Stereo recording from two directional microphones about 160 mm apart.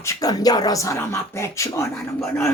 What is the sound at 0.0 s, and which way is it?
A woman's voice, 20° left (ahead or behind).